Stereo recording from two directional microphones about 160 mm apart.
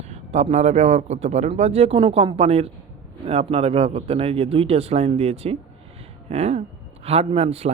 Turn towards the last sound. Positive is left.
turn(degrees=-40)  # may be behind; listen again after turning